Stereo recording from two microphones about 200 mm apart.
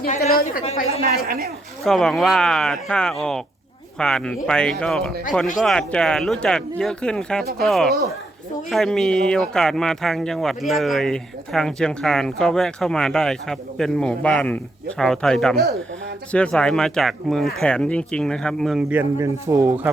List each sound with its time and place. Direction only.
0.0 s a woman's voice: 35° left (ahead or behind)
1.1 s speech: 50° right (ahead or behind)
1.8 s speech: centre (ahead or behind)